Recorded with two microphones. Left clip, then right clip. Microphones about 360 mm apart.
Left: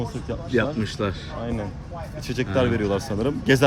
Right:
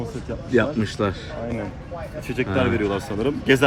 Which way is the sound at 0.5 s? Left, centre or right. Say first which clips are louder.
Right 3 dB; centre.